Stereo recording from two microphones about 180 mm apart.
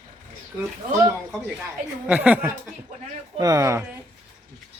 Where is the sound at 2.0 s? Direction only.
10° right (ahead or behind).